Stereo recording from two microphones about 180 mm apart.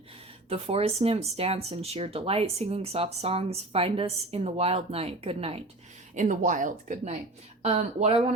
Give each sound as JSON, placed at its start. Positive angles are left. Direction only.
{"t": 0.5, "sound": "speech", "side_deg": -35}
{"t": 6.1, "sound": "speech", "side_deg": -45}